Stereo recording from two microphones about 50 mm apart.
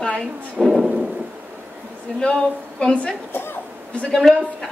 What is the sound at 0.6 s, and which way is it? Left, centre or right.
Thunder, centre.